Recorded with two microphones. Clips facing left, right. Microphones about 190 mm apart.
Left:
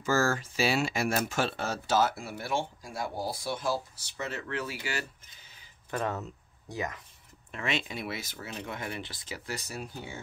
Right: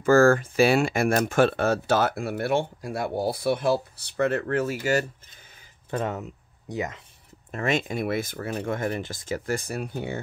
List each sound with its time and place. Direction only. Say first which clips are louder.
0.0 s speech: right 10 dB; 55° right (ahead or behind)
5.9 s speech: right 4 dB; 20° right (ahead or behind)
7.5 s speech: right 8 dB; 45° right (ahead or behind); by 10.2 s 60° right (ahead or behind)